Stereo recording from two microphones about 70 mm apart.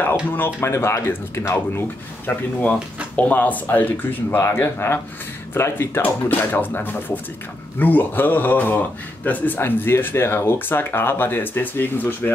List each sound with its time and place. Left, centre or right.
0.6 s speech: left
2.2 s speech: left
4.4 s speech: left